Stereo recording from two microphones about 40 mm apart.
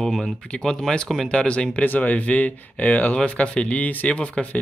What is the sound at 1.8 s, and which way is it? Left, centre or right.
Speech, left.